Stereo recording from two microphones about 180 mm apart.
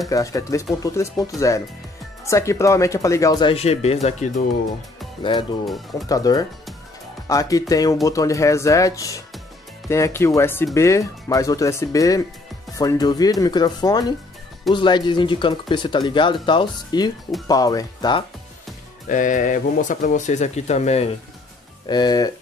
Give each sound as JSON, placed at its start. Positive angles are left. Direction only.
{"t": 0.1, "sound": "speech", "side_deg": 20}
{"t": 6.0, "sound": "speech", "side_deg": 20}
{"t": 19.0, "sound": "speech", "side_deg": 45}
{"t": 21.8, "sound": "speech", "side_deg": 25}